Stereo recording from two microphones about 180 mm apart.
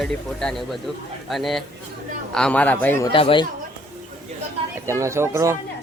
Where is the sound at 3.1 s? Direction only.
30° left (ahead or behind).